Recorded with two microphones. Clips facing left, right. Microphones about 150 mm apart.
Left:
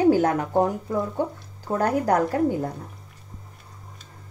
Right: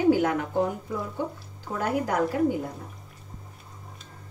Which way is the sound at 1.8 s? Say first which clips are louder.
Left 5 dB; 40° left (ahead or behind).